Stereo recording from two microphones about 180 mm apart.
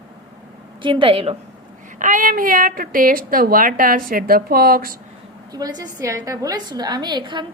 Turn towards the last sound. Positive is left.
turn(degrees=-25)  # may be behind; listen again after turning